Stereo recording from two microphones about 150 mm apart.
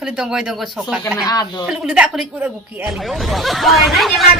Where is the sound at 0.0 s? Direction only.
5° right (ahead or behind).